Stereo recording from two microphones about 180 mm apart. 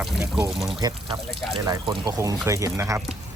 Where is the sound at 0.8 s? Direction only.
20° right (ahead or behind).